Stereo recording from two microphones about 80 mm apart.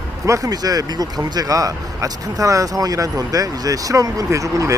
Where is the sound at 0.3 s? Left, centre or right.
Right.